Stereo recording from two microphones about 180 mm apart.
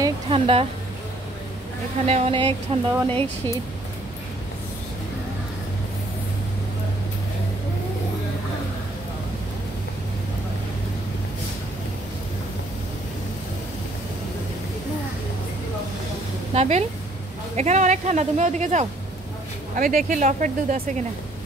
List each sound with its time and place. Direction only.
0.0 s speech: 30° right (ahead or behind)
2.0 s speech: 35° right (ahead or behind)
16.5 s speech: 40° right (ahead or behind)